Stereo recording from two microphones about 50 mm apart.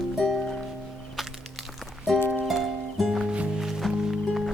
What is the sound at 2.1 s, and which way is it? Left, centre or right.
Music, centre.